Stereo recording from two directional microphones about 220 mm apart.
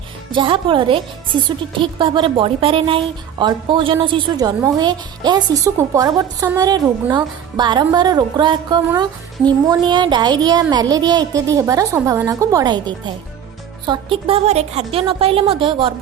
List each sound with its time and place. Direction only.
0.3 s speech: 20° right (ahead or behind)